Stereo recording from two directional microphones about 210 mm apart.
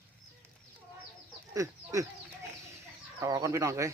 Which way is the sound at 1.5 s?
15° right (ahead or behind).